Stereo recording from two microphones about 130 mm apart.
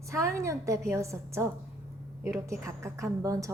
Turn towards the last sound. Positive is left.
turn(degrees=-25)  # may be behind; listen again after turning